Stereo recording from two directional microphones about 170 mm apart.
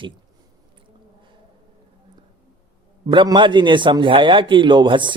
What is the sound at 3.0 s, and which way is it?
Speech, 30° right (ahead or behind).